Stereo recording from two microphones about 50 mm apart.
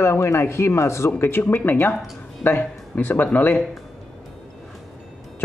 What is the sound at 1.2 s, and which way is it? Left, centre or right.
Speech, left.